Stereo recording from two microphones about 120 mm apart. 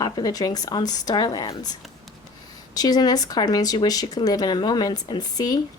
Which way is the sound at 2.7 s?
30° left (ahead or behind).